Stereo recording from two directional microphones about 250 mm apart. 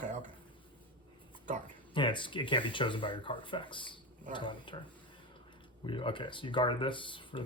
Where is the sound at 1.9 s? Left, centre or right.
Centre.